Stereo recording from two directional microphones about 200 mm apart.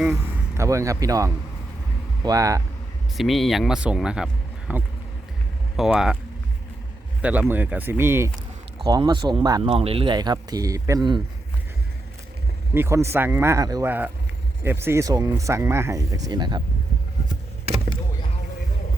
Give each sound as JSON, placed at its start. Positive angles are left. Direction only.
{"t": 0.0, "sound": "speech", "side_deg": -15}
{"t": 3.2, "sound": "speech", "side_deg": 0}
{"t": 7.2, "sound": "speech", "side_deg": -5}
{"t": 8.9, "sound": "speech", "side_deg": -20}
{"t": 12.7, "sound": "speech", "side_deg": -10}